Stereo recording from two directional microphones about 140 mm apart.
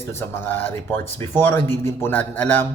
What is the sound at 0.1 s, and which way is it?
Speech, 15° left (ahead or behind).